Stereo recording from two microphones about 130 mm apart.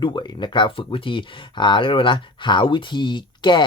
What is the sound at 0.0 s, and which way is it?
Speech, 35° left (ahead or behind).